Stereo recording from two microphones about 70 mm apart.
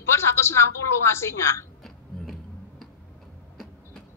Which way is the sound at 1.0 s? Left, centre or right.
Left.